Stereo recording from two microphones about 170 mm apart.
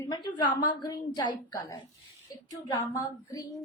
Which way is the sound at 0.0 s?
25° left (ahead or behind).